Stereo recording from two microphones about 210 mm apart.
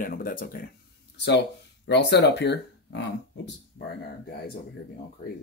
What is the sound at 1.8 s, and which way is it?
Speech, 55° left (ahead or behind).